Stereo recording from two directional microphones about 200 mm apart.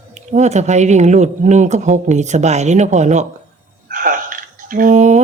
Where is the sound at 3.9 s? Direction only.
40° right (ahead or behind).